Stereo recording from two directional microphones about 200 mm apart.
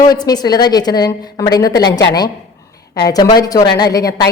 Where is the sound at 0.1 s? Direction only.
20° left (ahead or behind).